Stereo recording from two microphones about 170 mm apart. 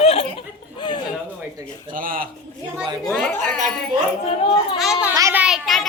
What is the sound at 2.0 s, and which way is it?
Speech, 55° right (ahead or behind).